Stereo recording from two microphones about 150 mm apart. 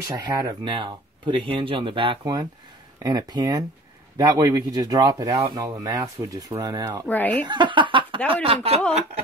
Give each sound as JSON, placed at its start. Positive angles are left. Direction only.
{"t": 0.0, "sound": "speech", "side_deg": -20}
{"t": 7.1, "sound": "a woman's voice", "side_deg": 10}
{"t": 7.4, "sound": "speech", "side_deg": -30}